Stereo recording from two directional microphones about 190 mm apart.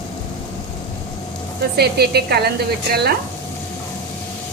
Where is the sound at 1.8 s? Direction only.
55° right (ahead or behind).